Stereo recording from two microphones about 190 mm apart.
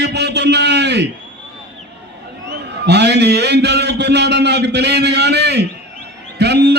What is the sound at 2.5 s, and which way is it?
A man's voice, 60° right (ahead or behind).